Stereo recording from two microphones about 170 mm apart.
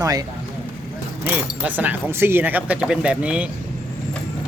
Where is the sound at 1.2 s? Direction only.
10° right (ahead or behind).